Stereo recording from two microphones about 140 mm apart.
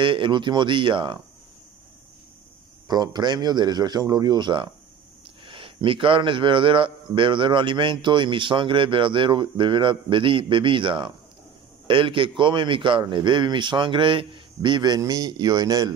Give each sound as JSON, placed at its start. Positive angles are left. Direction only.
{"t": 0.0, "sound": "a man's voice", "side_deg": -35}
{"t": 2.9, "sound": "a man's voice", "side_deg": -30}